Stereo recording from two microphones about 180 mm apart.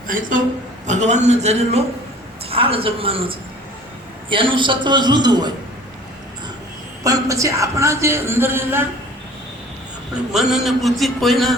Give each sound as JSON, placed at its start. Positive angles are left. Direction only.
{"t": 0.1, "sound": "a man's voice", "side_deg": -50}
{"t": 7.0, "sound": "speech", "side_deg": -20}
{"t": 10.3, "sound": "a man's voice", "side_deg": 0}